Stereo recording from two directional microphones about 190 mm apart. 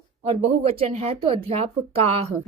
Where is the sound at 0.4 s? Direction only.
30° right (ahead or behind).